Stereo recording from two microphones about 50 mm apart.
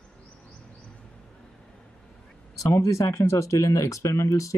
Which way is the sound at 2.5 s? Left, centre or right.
Left.